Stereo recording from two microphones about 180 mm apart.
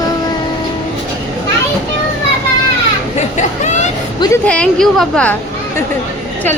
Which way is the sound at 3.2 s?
40° left (ahead or behind).